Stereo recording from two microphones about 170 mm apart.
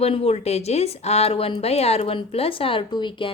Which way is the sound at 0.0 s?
35° left (ahead or behind).